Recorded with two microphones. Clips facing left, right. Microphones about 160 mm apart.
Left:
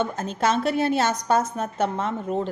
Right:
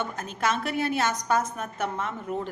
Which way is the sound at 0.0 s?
25° left (ahead or behind).